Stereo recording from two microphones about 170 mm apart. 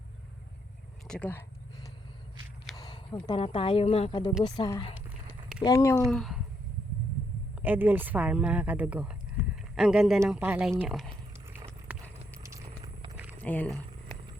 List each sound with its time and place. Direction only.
1.0 s speech: 5° left (ahead or behind)
2.7 s a sound: 25° left (ahead or behind)
3.2 s a woman's voice: 35° left (ahead or behind)
5.6 s speech: 15° left (ahead or behind)
6.1 s speech: centre (ahead or behind)
7.6 s speech: 10° right (ahead or behind)
11.9 s a sound: 10° right (ahead or behind)
12.4 s a sound: 20° right (ahead or behind)
13.4 s speech: 10° left (ahead or behind)